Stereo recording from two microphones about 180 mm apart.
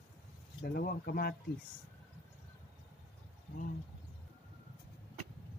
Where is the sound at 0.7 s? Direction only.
60° left (ahead or behind).